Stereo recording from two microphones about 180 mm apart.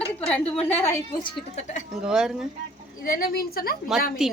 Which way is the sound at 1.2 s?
40° left (ahead or behind).